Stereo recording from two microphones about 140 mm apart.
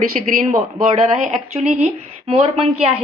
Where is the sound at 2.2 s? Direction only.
45° right (ahead or behind).